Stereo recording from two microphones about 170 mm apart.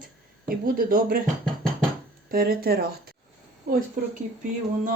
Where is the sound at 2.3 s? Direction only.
60° right (ahead or behind).